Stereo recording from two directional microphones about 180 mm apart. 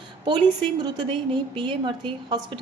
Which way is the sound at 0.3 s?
25° right (ahead or behind).